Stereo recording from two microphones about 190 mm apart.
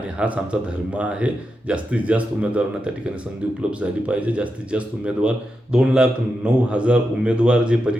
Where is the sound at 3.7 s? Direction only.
5° right (ahead or behind).